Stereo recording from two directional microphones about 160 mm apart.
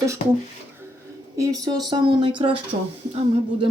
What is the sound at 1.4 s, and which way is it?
Speech, 20° right (ahead or behind).